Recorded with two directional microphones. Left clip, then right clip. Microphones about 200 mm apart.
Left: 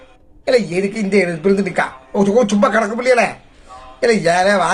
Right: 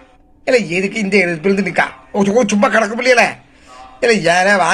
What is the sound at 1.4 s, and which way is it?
Speech, 5° right (ahead or behind).